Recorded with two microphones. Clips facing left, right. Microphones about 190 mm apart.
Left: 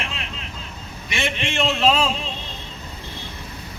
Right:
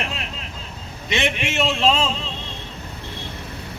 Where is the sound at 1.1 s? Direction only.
20° right (ahead or behind).